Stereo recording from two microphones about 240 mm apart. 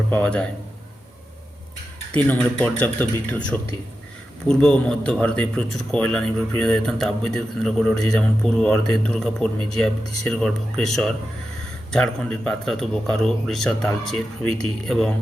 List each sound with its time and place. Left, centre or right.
0.1 s speech: centre
2.1 s speech: centre